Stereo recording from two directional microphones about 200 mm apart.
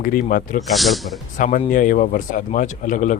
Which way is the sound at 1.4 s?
40° left (ahead or behind).